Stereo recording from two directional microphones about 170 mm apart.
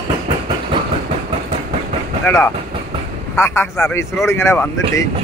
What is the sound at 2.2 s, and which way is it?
Speech, 15° left (ahead or behind).